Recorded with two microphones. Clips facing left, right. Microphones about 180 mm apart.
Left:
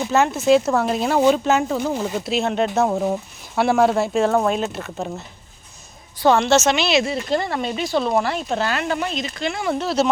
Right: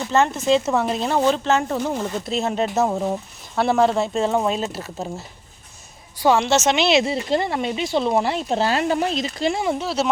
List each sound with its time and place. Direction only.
0.0 s speech: 5° left (ahead or behind)
6.1 s speech: 10° right (ahead or behind); by 9.7 s 25° right (ahead or behind)
9.7 s speech: 5° right (ahead or behind)